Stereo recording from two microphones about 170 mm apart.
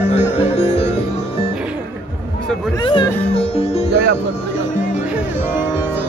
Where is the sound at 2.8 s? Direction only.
30° left (ahead or behind).